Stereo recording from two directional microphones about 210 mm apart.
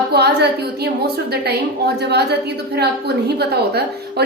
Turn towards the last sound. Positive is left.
turn(degrees=-50)  # may be behind; listen again after turning